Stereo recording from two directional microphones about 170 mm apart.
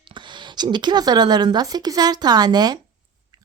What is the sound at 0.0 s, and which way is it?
A woman's voice, 30° right (ahead or behind).